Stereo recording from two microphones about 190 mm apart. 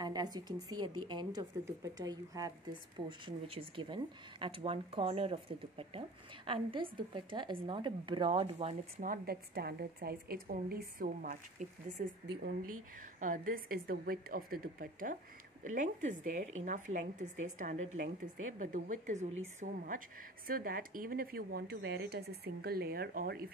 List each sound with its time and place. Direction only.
0.0 s speech: 20° right (ahead or behind)
9.1 s speech: 55° right (ahead or behind)
13.2 s speech: 45° right (ahead or behind)